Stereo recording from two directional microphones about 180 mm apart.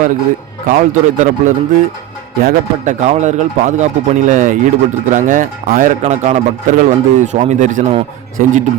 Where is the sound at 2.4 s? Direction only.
40° right (ahead or behind).